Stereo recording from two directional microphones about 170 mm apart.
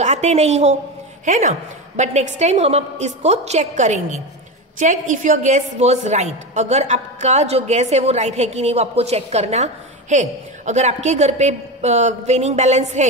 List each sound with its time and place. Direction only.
0.0 s a woman's voice: 40° right (ahead or behind)